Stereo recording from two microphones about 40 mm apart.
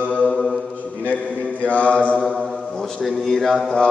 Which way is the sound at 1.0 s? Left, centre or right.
Left.